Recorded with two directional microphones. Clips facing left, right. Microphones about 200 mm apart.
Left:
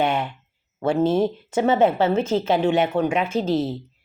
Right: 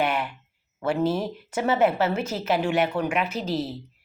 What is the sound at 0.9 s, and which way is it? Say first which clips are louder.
Speech: left 5 dB; 25° left (ahead or behind).